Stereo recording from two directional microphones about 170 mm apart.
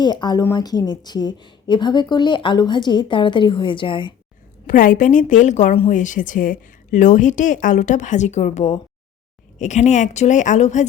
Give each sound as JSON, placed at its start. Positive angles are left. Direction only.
{"t": 0.0, "sound": "a woman's voice", "side_deg": 25}
{"t": 4.6, "sound": "speech", "side_deg": 50}